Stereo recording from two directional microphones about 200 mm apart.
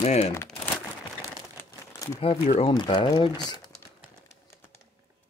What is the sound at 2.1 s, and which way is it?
Speech, 30° left (ahead or behind).